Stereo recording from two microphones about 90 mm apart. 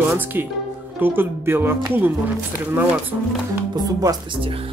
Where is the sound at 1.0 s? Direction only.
25° right (ahead or behind).